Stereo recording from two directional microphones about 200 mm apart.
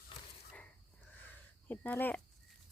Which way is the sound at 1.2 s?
10° left (ahead or behind).